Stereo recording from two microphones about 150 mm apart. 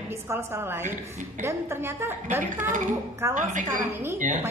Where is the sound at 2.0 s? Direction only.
15° right (ahead or behind).